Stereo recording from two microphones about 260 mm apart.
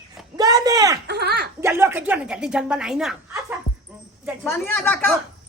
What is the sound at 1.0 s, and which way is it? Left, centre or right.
Speech, right.